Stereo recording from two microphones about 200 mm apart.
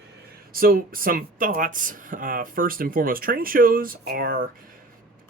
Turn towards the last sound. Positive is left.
turn(degrees=-50)  # may be behind; listen again after turning